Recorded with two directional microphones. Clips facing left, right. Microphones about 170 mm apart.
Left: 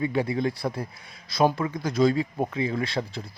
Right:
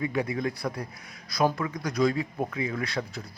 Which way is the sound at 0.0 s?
30° left (ahead or behind).